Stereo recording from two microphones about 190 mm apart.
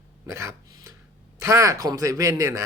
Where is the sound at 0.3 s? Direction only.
15° right (ahead or behind).